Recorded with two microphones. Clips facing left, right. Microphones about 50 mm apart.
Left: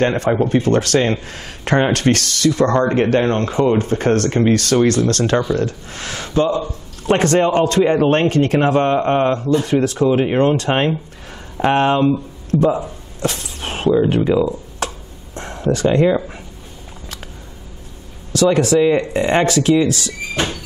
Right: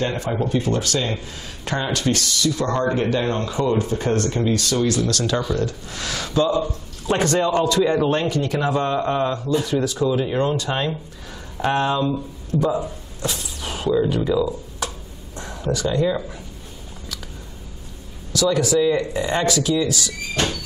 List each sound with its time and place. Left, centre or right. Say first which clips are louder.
0.0 s a man's voice: left 7 dB; left
12.6 s speech: left 5 dB; left
13.2 s speech: left 5 dB; left
18.3 s speech: left 5 dB; left
20.3 s a sound: left 1 dB; centre